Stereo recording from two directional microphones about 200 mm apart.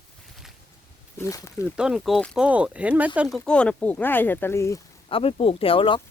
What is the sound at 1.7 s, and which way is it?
Speech, 5° right (ahead or behind).